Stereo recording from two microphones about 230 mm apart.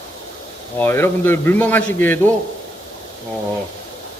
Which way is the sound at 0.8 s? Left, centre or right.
Centre.